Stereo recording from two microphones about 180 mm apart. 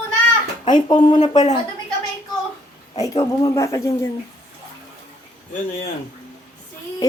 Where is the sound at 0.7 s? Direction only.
25° left (ahead or behind).